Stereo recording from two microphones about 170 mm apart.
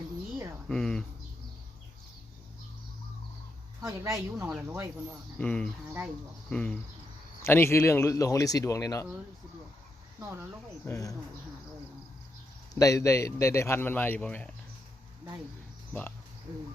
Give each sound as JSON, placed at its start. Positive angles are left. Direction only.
{"t": 0.7, "sound": "bird", "side_deg": 5}
{"t": 3.8, "sound": "a woman's voice", "side_deg": -20}
{"t": 5.4, "sound": "speech", "side_deg": 5}
{"t": 6.5, "sound": "cricket", "side_deg": 5}
{"t": 7.4, "sound": "speech", "side_deg": 15}
{"t": 10.2, "sound": "speech", "side_deg": -15}
{"t": 10.8, "sound": "speech", "side_deg": 20}
{"t": 12.8, "sound": "speech", "side_deg": 20}
{"t": 15.9, "sound": "speech", "side_deg": 10}